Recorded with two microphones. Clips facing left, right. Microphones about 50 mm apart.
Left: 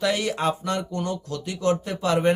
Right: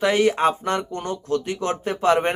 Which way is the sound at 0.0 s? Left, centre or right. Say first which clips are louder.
Right 5 dB; right.